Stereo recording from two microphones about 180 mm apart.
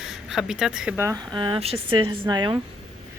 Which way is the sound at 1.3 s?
30° right (ahead or behind).